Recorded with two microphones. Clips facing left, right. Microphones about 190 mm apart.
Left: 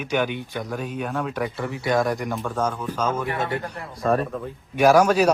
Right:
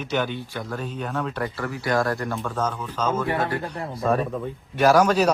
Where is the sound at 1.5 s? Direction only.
25° left (ahead or behind).